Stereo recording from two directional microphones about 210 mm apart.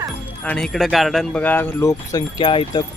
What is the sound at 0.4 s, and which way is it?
Speech, 5° left (ahead or behind).